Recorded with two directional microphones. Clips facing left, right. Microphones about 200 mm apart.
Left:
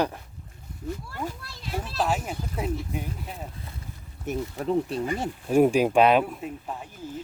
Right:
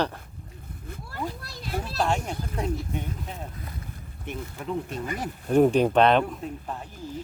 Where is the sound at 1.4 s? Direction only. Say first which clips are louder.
Right 1 dB; 40° right (ahead or behind).